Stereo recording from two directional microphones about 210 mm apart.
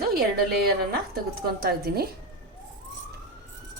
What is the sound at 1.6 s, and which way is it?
Speech, 50° right (ahead or behind).